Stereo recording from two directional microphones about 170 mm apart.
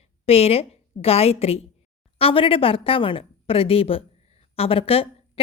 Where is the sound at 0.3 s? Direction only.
35° left (ahead or behind).